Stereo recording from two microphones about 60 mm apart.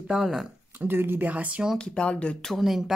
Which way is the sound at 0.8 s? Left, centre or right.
Right.